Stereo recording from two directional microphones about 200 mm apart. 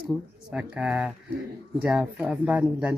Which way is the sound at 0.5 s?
5° right (ahead or behind).